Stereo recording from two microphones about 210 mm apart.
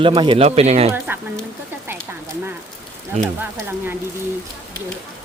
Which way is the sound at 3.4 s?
10° right (ahead or behind).